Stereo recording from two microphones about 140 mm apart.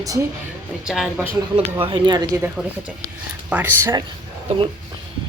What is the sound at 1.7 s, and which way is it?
Speech, 40° right (ahead or behind).